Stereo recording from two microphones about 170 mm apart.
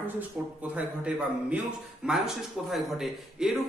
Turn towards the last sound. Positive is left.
turn(degrees=0)  # may be behind; listen again after turning